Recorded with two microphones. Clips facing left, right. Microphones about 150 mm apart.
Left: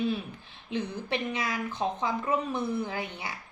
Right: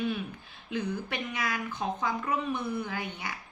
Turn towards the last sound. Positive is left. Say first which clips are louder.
# left 1 dB
turn(degrees=25)  # may be behind; listen again after turning